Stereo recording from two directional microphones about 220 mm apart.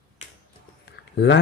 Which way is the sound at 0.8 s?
50° left (ahead or behind).